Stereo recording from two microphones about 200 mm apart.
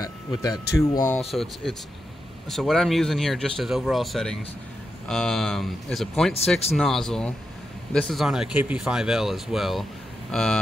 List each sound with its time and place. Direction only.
0.4 s speech: 15° left (ahead or behind)
1.3 s speech: centre (ahead or behind)